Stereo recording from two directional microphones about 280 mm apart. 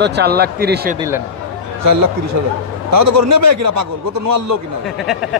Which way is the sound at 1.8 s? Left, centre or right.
Right.